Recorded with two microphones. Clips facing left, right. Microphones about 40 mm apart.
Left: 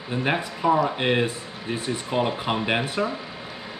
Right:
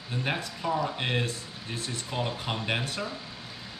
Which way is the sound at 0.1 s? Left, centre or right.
Centre.